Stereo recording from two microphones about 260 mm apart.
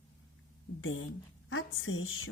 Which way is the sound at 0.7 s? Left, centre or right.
Left.